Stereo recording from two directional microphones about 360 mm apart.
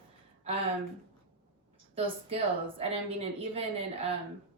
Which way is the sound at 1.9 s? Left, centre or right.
Centre.